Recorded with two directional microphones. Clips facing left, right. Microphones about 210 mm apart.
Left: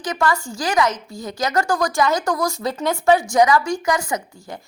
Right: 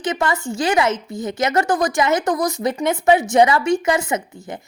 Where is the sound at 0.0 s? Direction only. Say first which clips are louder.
Right 1 dB; 25° right (ahead or behind).